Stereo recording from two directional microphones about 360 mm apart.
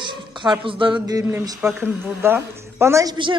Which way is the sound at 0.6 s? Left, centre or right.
Centre.